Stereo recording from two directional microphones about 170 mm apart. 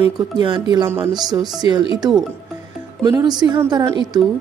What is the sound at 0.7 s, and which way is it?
Speech, 15° right (ahead or behind).